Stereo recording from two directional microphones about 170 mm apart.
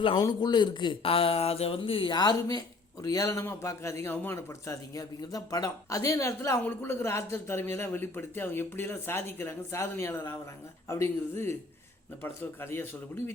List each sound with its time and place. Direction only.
0.2 s speech: 25° left (ahead or behind)